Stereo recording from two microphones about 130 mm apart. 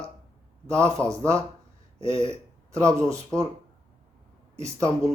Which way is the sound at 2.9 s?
25° right (ahead or behind).